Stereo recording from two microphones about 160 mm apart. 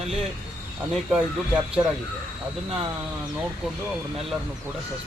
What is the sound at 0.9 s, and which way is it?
Speech, 5° right (ahead or behind).